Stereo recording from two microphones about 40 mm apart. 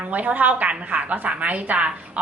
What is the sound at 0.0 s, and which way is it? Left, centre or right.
A woman's voice, right.